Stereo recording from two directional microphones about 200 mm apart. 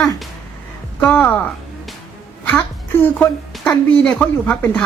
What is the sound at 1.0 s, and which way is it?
Speech, 5° left (ahead or behind).